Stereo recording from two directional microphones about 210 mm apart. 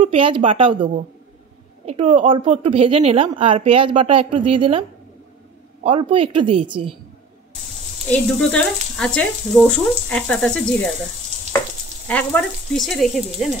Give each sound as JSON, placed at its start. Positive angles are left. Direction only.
{"t": 0.0, "sound": "speech", "side_deg": -25}
{"t": 5.9, "sound": "speech", "side_deg": -25}
{"t": 8.1, "sound": "speech", "side_deg": 5}
{"t": 12.1, "sound": "speech", "side_deg": 5}